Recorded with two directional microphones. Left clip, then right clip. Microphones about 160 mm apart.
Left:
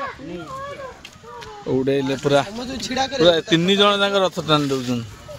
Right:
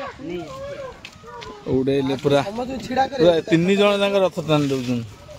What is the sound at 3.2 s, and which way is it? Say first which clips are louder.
Speech: left 2 dB; centre (ahead or behind).